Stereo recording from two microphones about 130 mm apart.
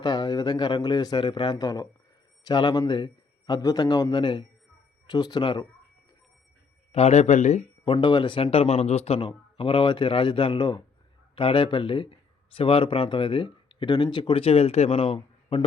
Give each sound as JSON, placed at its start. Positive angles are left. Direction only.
{"t": 0.0, "sound": "speech", "side_deg": 35}
{"t": 6.9, "sound": "speech", "side_deg": 55}
{"t": 7.9, "sound": "speech", "side_deg": 35}